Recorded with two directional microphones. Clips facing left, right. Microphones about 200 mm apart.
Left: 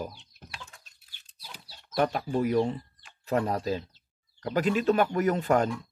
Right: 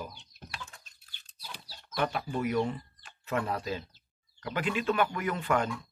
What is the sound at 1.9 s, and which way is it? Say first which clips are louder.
Speech: left 5 dB; 40° left (ahead or behind).